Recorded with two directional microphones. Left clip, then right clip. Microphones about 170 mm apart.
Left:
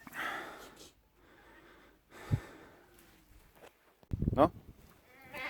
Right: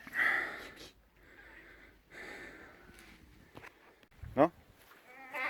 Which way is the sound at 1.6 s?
35° left (ahead or behind).